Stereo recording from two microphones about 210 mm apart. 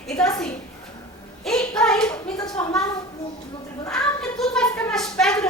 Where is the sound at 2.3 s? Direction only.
20° left (ahead or behind).